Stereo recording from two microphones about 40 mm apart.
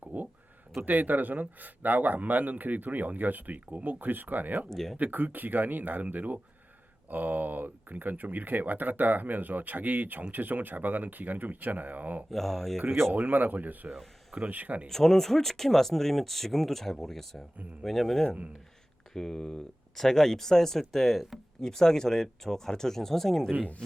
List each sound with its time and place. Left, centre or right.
0.0 s a sound: right
0.9 s speech: right
4.7 s speech: centre
4.9 s speech: right
12.3 s speech: centre
12.8 s speech: right
13.1 s speech: right
13.9 s a sound: centre
14.3 s speech: right
14.8 s speech: centre